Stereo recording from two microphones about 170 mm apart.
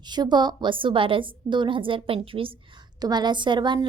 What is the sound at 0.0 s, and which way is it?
A woman's voice, 25° right (ahead or behind).